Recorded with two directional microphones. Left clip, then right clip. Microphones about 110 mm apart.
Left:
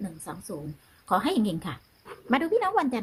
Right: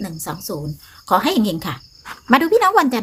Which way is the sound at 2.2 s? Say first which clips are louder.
Right 11 dB; centre (ahead or behind).